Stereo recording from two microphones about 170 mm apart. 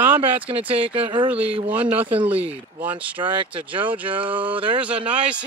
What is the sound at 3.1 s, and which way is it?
Speech, 30° right (ahead or behind).